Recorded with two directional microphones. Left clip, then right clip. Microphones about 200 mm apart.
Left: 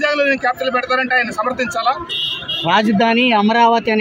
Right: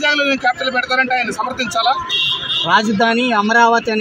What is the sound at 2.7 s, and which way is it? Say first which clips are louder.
Speech: even; 40° left (ahead or behind).